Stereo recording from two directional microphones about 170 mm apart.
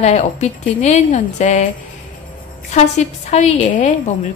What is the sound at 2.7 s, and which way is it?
A woman's voice, 40° left (ahead or behind).